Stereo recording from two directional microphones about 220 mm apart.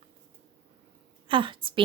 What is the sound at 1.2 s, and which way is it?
Speech, 25° right (ahead or behind).